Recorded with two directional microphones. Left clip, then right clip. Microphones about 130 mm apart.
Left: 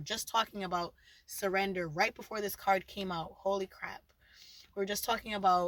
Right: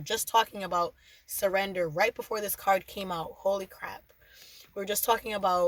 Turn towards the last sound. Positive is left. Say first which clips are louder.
# right 3 dB
turn(degrees=-50)  # may be behind; listen again after turning